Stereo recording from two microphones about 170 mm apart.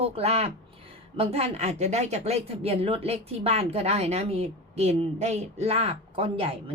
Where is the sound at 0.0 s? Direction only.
35° right (ahead or behind).